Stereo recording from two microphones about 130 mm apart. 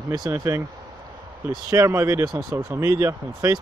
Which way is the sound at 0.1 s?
30° right (ahead or behind).